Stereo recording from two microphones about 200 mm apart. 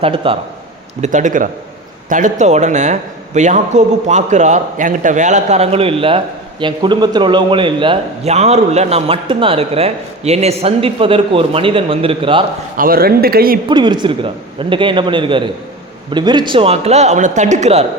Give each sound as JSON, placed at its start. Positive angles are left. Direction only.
{"t": 0.0, "sound": "a man's voice", "side_deg": -25}
{"t": 1.0, "sound": "a man's voice", "side_deg": -40}
{"t": 12.7, "sound": "a man's voice", "side_deg": -45}
{"t": 13.7, "sound": "a man's voice", "side_deg": -20}